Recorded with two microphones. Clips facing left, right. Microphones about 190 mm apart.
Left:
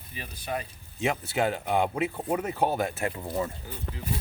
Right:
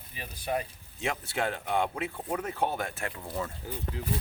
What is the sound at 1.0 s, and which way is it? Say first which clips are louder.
Speech: left 5 dB; 5° left (ahead or behind).